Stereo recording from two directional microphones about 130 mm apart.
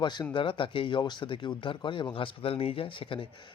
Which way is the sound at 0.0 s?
35° left (ahead or behind).